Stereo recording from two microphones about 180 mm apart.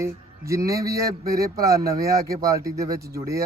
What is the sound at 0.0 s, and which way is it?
A man's voice, 15° right (ahead or behind).